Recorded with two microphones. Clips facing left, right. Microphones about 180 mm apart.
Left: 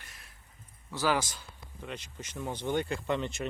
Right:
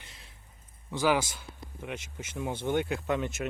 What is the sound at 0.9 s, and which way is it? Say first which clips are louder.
Speech: right 3 dB; 10° right (ahead or behind).